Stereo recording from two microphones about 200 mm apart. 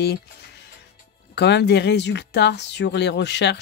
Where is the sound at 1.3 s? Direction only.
55° left (ahead or behind).